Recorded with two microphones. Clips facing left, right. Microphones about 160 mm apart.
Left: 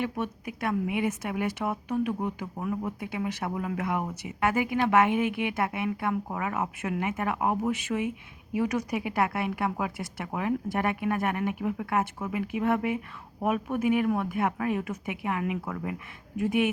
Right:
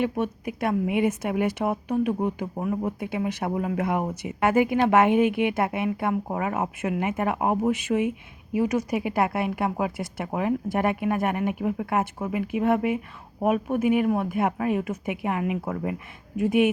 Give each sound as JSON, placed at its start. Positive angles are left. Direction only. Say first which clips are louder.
{"t": 0.0, "sound": "a woman's voice", "louder": "right 5 dB", "side_deg": -20}
{"t": 16.4, "sound": "speech", "louder": "right 5 dB", "side_deg": -15}